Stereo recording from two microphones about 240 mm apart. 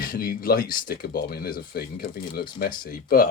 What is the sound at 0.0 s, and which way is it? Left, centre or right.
Speech, left.